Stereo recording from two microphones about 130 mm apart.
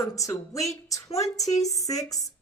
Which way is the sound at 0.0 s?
25° left (ahead or behind).